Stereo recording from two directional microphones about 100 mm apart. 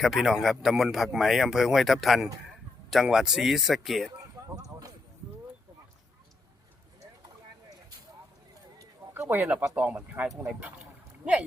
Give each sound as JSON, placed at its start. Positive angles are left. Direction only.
{"t": 0.0, "sound": "speech", "side_deg": -5}
{"t": 4.4, "sound": "a sound", "side_deg": -40}
{"t": 9.1, "sound": "speech", "side_deg": -20}